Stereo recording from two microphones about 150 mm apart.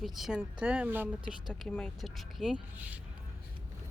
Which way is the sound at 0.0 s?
Centre (ahead or behind).